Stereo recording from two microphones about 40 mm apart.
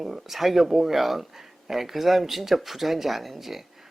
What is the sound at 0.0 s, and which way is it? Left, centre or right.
Speech, centre.